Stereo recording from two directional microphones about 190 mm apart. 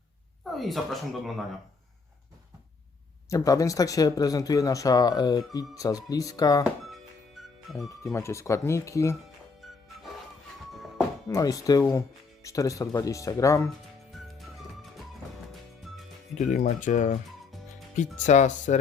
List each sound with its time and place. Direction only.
0.5 s speech: centre (ahead or behind)
3.2 s speech: 20° left (ahead or behind)
6.8 s music: centre (ahead or behind)
7.8 s speech: 15° left (ahead or behind)
9.6 s music: centre (ahead or behind)
11.3 s speech: 15° left (ahead or behind)
16.3 s speech: 40° left (ahead or behind)
17.2 s music: centre (ahead or behind)
17.9 s speech: 40° left (ahead or behind)